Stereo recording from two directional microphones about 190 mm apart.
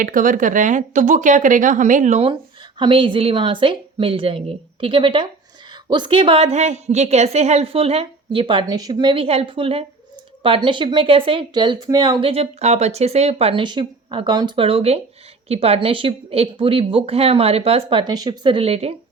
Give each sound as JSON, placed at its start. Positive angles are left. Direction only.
{"t": 0.0, "sound": "speech", "side_deg": -45}